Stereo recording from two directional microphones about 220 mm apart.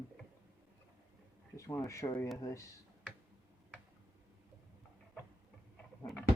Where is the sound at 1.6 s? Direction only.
15° left (ahead or behind).